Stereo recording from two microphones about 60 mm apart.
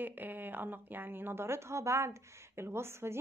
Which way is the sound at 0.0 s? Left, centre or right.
Right.